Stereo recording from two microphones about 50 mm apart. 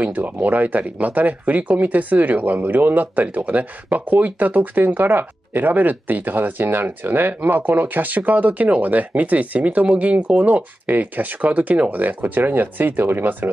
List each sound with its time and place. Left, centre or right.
0.0 s speech: right